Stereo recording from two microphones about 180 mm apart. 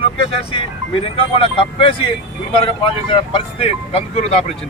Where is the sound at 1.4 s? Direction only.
30° left (ahead or behind).